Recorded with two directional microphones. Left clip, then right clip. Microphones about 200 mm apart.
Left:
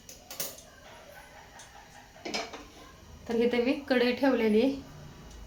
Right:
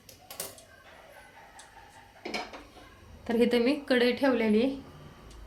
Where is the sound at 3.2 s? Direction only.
40° right (ahead or behind); by 4.7 s 15° right (ahead or behind).